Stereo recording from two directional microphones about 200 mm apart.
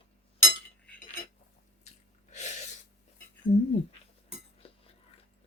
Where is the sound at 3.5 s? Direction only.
30° left (ahead or behind).